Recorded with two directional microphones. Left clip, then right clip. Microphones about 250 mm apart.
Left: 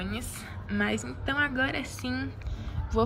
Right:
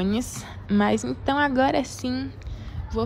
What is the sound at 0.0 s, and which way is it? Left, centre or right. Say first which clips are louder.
A woman's voice: right 9 dB; right.